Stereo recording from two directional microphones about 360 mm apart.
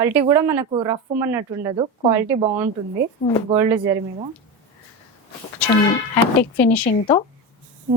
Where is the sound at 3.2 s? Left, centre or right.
Left.